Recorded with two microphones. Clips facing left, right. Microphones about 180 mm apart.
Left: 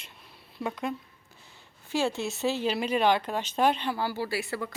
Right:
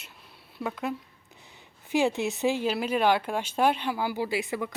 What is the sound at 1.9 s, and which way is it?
Speech, 15° right (ahead or behind).